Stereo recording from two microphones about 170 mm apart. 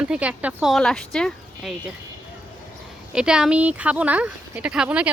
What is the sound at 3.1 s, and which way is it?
Speech, 5° right (ahead or behind).